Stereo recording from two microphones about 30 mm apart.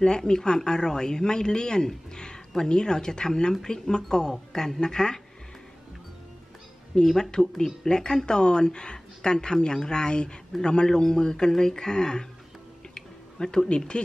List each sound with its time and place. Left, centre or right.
0.0 s speech: left
2.1 s a sound: left
2.7 s speech: left
7.0 s speech: centre
12.9 s a sound: left
13.7 s speech: left